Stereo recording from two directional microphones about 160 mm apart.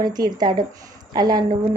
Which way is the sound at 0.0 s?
25° right (ahead or behind).